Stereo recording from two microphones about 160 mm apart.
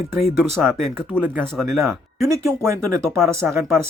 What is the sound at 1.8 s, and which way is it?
Speech, 20° right (ahead or behind).